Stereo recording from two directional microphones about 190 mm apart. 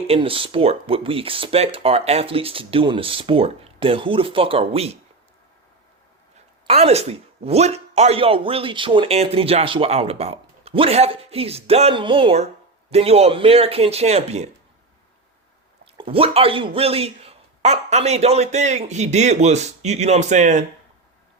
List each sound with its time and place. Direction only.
0.1 s speech: 30° right (ahead or behind)
6.7 s speech: 35° right (ahead or behind)
16.0 s speech: 30° right (ahead or behind)